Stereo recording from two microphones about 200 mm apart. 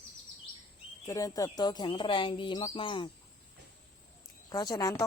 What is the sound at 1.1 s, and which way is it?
Speech, 15° left (ahead or behind).